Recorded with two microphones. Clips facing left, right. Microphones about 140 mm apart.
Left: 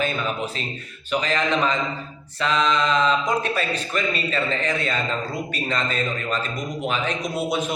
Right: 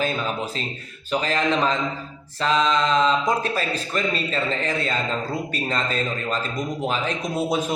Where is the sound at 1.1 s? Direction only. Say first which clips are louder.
Even; 35° right (ahead or behind).